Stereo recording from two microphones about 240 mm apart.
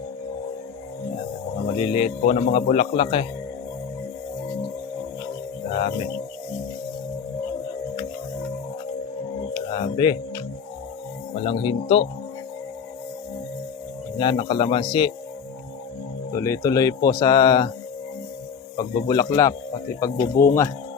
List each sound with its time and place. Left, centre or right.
1.6 s speech: left
9.6 s speech: left
11.4 s speech: left
14.2 s speech: left
16.3 s speech: centre
18.8 s speech: centre